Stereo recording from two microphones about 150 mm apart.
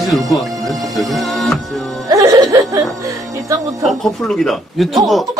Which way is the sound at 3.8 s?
Centre (ahead or behind).